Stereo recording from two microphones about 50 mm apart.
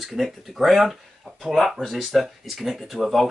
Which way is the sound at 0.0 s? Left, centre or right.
Centre.